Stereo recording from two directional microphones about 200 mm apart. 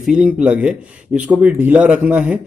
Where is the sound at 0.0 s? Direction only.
5° right (ahead or behind).